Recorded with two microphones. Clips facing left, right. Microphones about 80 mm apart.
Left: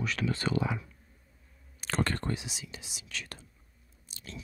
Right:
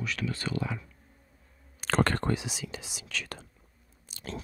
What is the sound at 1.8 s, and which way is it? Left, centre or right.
Speech, right.